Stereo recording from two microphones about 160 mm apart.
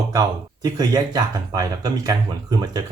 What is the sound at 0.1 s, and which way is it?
Speech, 25° right (ahead or behind).